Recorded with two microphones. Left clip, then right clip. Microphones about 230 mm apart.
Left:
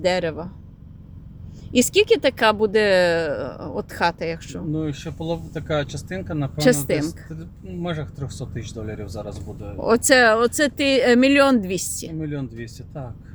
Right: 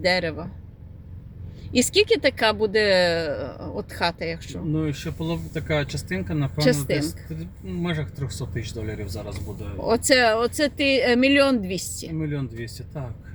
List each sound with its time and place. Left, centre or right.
0.0 s speech: centre
1.7 s speech: centre
4.8 s speech: centre
6.6 s speech: left
7.8 s speech: centre
9.8 s speech: left
12.2 s speech: centre